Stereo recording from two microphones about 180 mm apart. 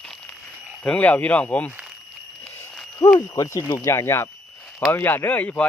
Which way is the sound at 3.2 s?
20° left (ahead or behind).